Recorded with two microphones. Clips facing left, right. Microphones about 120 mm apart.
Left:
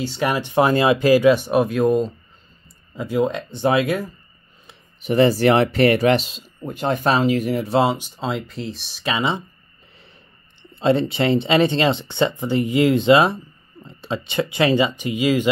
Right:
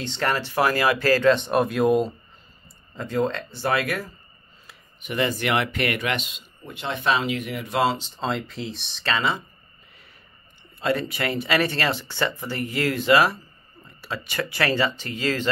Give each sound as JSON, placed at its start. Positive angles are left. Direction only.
{"t": 0.0, "sound": "speech", "side_deg": 10}
{"t": 3.0, "sound": "speech", "side_deg": 10}
{"t": 4.6, "sound": "speech", "side_deg": 35}
{"t": 7.8, "sound": "speech", "side_deg": 15}
{"t": 8.2, "sound": "speech", "side_deg": 0}
{"t": 9.0, "sound": "speech", "side_deg": 15}
{"t": 10.6, "sound": "speech", "side_deg": 25}